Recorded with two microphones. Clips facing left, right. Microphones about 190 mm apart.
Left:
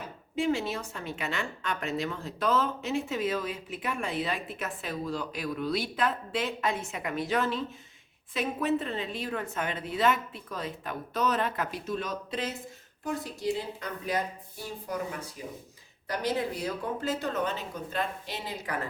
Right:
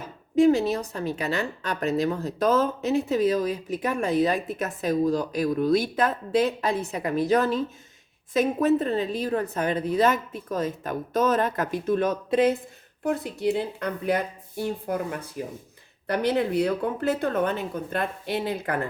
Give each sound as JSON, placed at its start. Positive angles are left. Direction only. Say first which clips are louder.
{"t": 0.3, "sound": "a woman's voice", "louder": "right 10 dB", "side_deg": -40}